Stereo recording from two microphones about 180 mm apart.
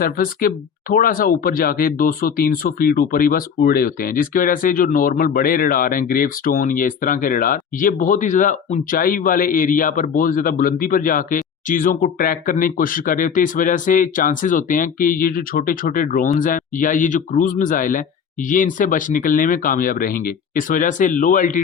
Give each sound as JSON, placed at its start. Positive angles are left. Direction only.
{"t": 0.0, "sound": "speech", "side_deg": 50}